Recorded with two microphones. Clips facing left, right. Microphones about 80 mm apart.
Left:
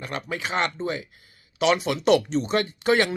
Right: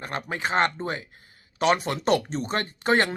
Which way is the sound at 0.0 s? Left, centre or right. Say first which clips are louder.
Right 1 dB; right.